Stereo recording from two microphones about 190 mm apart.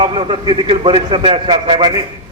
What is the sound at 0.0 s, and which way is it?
A man's voice, 25° right (ahead or behind).